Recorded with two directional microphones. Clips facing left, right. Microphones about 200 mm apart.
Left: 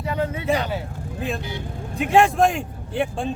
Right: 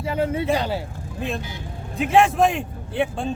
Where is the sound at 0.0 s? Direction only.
30° right (ahead or behind).